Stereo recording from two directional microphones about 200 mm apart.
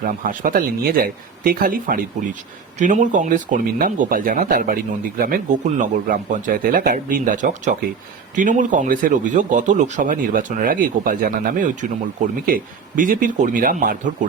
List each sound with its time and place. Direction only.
0.0 s speech: 40° right (ahead or behind)